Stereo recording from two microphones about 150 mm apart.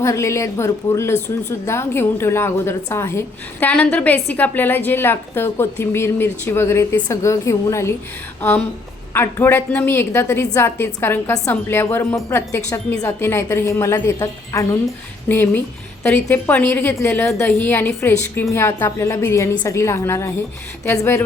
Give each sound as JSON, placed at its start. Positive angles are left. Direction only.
{"t": 0.0, "sound": "a woman's voice", "side_deg": 20}